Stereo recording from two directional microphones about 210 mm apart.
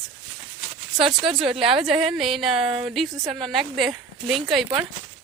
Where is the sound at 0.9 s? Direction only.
25° right (ahead or behind).